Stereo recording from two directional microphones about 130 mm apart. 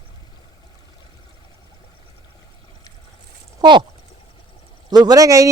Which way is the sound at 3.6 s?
30° right (ahead or behind).